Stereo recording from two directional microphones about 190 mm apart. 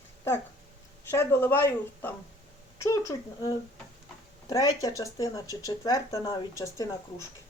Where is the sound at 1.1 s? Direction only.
10° left (ahead or behind).